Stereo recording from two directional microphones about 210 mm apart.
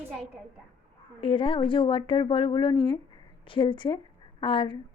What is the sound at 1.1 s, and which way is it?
A woman's voice, 25° left (ahead or behind).